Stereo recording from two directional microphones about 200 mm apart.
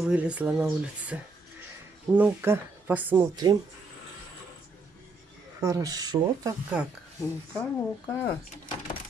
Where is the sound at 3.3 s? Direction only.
20° right (ahead or behind).